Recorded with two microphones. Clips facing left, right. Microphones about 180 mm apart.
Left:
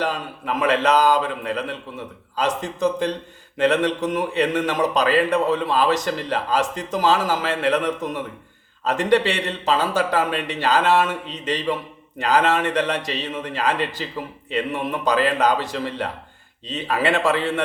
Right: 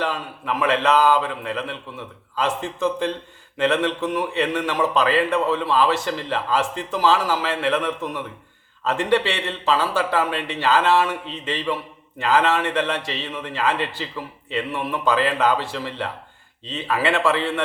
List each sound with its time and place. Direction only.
0.0 s a man's voice: 40° left (ahead or behind)
15.0 s a man's voice: 40° left (ahead or behind)